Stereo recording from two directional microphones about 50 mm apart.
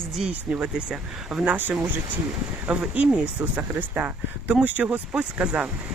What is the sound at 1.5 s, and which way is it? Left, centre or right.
Speech, right.